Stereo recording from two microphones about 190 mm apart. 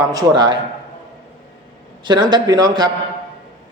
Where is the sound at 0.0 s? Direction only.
20° right (ahead or behind).